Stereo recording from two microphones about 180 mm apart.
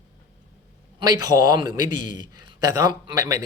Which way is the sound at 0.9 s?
20° right (ahead or behind).